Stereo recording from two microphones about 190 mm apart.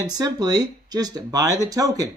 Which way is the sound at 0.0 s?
20° right (ahead or behind).